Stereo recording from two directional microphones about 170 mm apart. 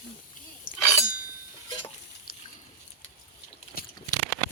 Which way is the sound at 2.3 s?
60° left (ahead or behind).